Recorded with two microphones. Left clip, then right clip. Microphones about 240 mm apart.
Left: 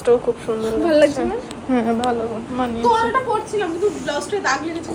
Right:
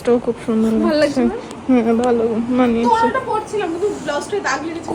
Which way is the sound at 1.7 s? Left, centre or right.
Right.